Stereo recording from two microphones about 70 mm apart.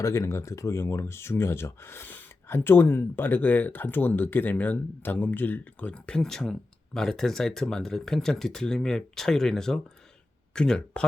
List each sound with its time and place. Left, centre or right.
0.0 s speech: left; by 11.0 s centre